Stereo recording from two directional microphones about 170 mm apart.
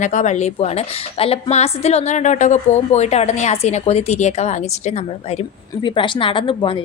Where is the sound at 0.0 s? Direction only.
45° left (ahead or behind).